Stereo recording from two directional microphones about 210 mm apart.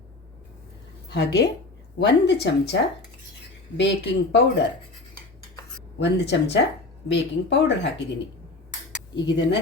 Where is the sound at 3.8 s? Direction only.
55° left (ahead or behind).